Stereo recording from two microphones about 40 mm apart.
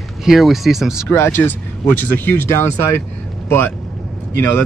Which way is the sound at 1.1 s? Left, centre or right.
Left.